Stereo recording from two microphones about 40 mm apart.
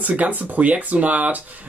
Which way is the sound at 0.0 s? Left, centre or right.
Right.